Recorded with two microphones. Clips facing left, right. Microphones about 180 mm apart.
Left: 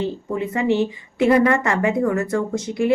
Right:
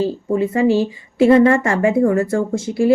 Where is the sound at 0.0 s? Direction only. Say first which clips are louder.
Right 6 dB; 30° right (ahead or behind).